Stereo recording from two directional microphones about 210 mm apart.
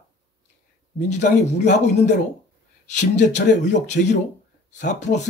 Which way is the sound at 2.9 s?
35° left (ahead or behind).